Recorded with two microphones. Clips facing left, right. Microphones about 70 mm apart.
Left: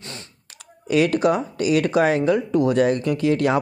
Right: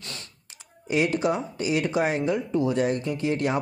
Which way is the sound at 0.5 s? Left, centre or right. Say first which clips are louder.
Left 6 dB; left.